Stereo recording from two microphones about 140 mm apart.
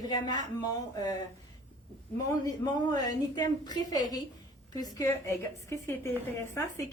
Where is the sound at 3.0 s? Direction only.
30° left (ahead or behind).